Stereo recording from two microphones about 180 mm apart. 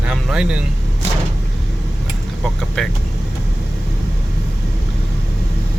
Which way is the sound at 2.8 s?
5° left (ahead or behind).